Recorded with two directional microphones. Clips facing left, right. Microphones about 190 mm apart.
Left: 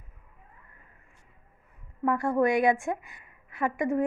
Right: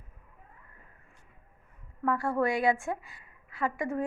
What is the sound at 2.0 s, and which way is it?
A woman's voice, 20° left (ahead or behind).